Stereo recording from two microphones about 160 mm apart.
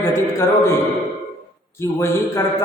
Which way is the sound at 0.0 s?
15° left (ahead or behind).